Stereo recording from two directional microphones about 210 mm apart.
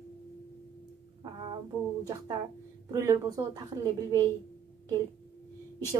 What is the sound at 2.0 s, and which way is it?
A woman's voice, 20° right (ahead or behind).